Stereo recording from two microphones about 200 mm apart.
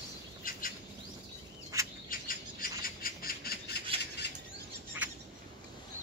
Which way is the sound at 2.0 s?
45° left (ahead or behind).